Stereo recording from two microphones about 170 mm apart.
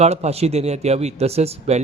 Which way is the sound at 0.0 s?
40° right (ahead or behind).